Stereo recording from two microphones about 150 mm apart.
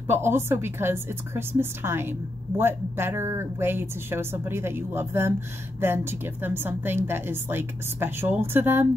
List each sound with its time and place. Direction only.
0.0 s a woman's voice: 15° right (ahead or behind)